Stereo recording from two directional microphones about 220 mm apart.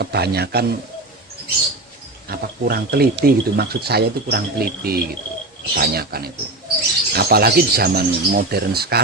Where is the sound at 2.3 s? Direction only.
45° right (ahead or behind).